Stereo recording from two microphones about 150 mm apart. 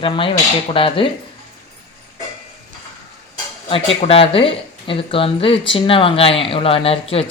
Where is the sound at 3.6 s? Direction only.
40° left (ahead or behind).